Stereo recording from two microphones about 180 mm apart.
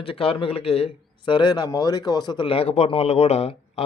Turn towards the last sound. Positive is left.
turn(degrees=35)  # may be behind; listen again after turning